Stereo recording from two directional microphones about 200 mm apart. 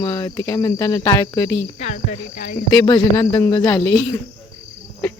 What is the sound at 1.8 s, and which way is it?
Speech, 35° left (ahead or behind).